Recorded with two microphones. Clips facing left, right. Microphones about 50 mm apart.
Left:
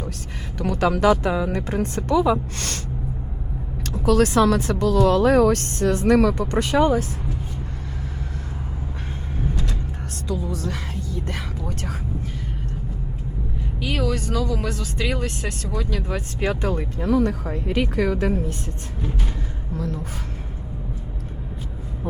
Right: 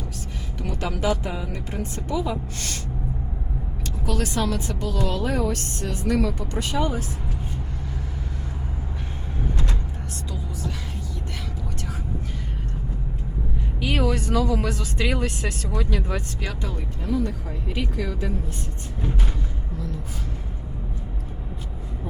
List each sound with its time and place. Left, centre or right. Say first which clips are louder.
0.6 s a woman's voice: left 8 dB; left
4.0 s a woman's voice: left 9 dB; left
10.2 s a woman's voice: left 8 dB; left
13.8 s speech: right 1 dB; centre
16.4 s speech: left 8 dB; left
16.6 s a woman's voice: left 7 dB; left